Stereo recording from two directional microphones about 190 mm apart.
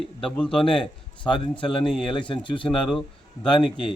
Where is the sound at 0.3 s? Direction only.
5° left (ahead or behind).